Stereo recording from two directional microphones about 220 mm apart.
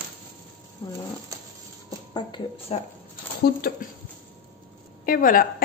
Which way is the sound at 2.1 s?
20° left (ahead or behind).